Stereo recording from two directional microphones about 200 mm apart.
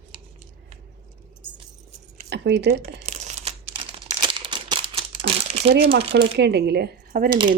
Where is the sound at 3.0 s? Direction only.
35° right (ahead or behind).